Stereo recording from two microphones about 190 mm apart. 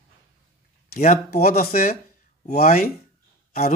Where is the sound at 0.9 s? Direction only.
55° left (ahead or behind).